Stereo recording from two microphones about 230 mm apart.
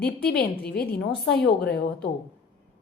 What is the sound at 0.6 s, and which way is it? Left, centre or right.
A woman's voice, left.